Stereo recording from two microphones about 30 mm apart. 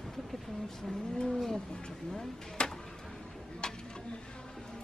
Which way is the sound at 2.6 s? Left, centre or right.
Left.